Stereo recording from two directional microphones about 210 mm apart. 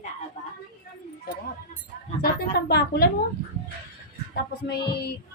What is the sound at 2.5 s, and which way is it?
Speech, 50° left (ahead or behind).